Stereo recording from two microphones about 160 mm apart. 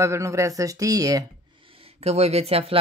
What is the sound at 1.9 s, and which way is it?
Speech, 40° right (ahead or behind).